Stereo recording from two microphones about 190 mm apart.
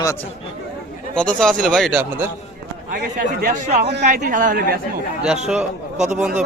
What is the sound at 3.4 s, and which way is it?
A man's voice, 40° right (ahead or behind).